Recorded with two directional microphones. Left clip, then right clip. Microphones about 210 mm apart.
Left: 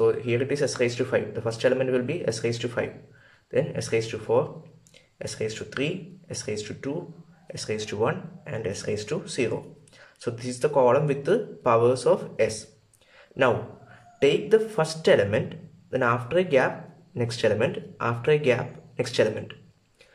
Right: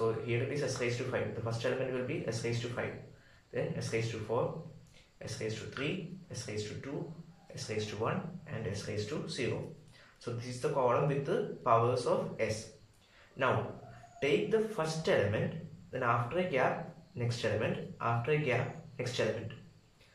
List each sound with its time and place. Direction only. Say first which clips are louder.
0.0 s speech: left 11 dB; 45° left (ahead or behind)
14.2 s speech: left 10 dB; 45° left (ahead or behind)